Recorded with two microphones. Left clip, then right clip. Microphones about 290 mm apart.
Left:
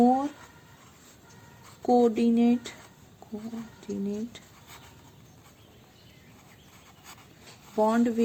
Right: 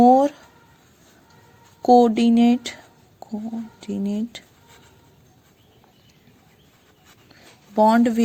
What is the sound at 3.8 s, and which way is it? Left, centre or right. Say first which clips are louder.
Speech: right 5 dB; right.